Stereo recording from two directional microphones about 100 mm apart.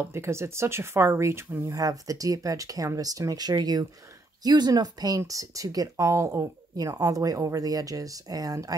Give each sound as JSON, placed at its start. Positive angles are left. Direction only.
{"t": 0.0, "sound": "speech", "side_deg": -25}
{"t": 1.8, "sound": "speech", "side_deg": -35}